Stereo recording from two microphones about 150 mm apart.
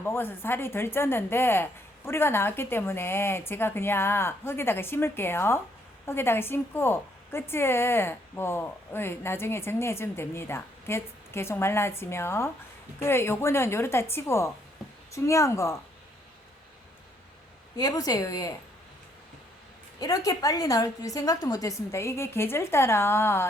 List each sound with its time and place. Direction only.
0.0 s a woman's voice: 15° left (ahead or behind)
17.7 s a woman's voice: 25° left (ahead or behind)
20.0 s a woman's voice: 25° left (ahead or behind)